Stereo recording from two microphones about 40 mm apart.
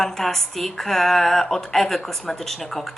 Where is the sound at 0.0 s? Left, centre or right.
Centre.